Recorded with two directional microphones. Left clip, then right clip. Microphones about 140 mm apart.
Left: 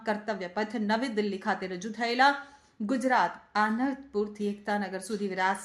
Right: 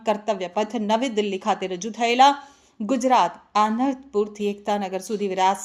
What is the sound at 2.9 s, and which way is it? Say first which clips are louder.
A woman's voice: right 7 dB; 25° right (ahead or behind).